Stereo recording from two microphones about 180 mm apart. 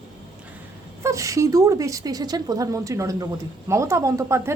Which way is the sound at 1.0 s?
15° right (ahead or behind).